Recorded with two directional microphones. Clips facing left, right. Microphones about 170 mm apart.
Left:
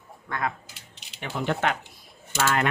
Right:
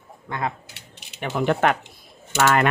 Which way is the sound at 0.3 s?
20° right (ahead or behind).